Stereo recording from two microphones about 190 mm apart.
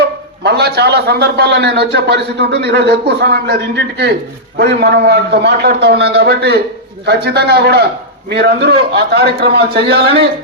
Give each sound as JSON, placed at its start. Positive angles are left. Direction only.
{"t": 0.4, "sound": "a man's voice", "side_deg": -60}